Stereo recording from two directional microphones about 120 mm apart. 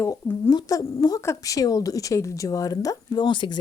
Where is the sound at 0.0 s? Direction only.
20° left (ahead or behind).